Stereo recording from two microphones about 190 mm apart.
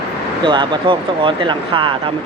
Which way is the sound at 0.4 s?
25° right (ahead or behind).